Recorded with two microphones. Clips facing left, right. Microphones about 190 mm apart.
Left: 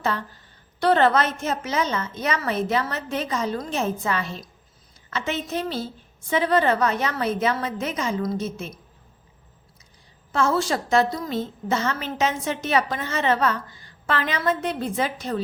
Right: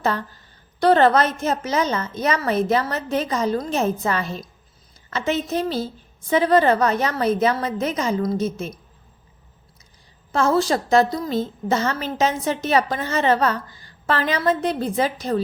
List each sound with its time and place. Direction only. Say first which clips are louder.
0.8 s a woman's voice: right 3 dB; 40° right (ahead or behind)
10.3 s a woman's voice: right 3 dB; 40° right (ahead or behind)